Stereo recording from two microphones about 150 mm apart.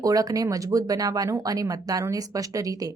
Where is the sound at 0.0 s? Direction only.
25° right (ahead or behind).